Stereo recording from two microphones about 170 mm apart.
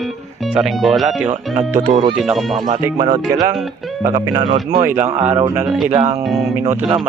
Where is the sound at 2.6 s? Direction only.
25° right (ahead or behind).